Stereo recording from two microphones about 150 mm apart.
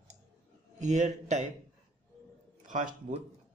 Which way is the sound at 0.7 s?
50° right (ahead or behind).